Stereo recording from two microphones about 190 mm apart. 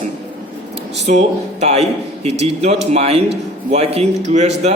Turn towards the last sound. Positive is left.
turn(degrees=-35)  # may be behind; listen again after turning